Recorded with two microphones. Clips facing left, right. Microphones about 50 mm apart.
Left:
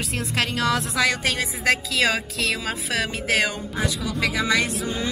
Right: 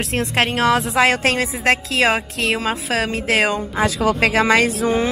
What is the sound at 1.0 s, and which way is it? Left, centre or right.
Speech, right.